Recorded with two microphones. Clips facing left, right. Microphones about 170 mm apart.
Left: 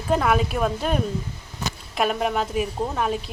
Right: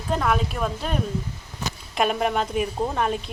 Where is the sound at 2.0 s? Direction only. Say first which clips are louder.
Even; centre (ahead or behind).